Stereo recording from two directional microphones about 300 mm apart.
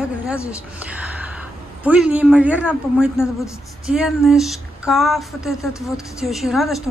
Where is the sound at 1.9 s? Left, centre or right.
Centre.